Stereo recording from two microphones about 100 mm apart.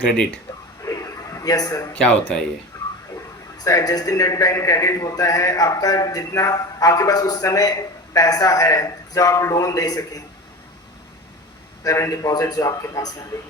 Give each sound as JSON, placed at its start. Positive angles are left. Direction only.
{"t": 0.8, "sound": "a sound", "side_deg": 30}
{"t": 1.9, "sound": "speech", "side_deg": 15}
{"t": 3.6, "sound": "a man's voice", "side_deg": 40}
{"t": 11.8, "sound": "a man's voice", "side_deg": 35}